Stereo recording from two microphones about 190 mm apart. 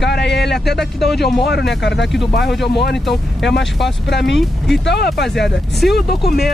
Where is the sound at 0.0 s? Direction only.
60° left (ahead or behind).